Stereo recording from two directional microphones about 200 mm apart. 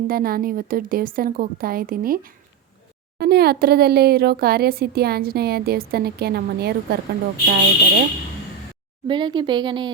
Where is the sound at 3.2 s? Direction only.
50° right (ahead or behind).